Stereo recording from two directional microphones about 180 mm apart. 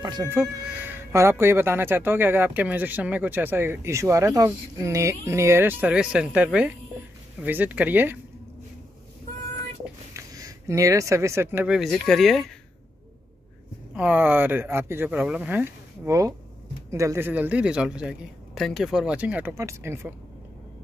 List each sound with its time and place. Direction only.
0.0 s music: 25° right (ahead or behind)
0.3 s speech: 10° right (ahead or behind)
10.1 s speech: 20° right (ahead or behind); by 12.4 s centre (ahead or behind)
13.9 s speech: 10° right (ahead or behind)